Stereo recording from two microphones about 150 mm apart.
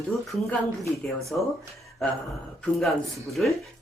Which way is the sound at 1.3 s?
10° left (ahead or behind).